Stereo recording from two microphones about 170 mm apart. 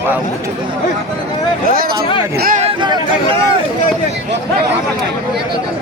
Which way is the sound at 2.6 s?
25° right (ahead or behind).